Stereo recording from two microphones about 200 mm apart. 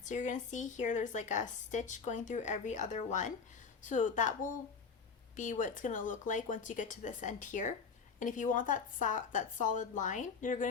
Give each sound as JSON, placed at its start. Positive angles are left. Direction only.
{"t": 0.0, "sound": "a woman's voice", "side_deg": 40}